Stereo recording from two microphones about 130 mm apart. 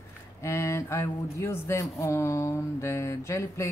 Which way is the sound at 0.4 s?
20° left (ahead or behind).